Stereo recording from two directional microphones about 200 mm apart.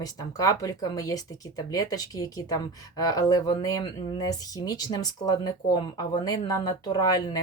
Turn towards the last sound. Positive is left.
turn(degrees=20)  # may be behind; listen again after turning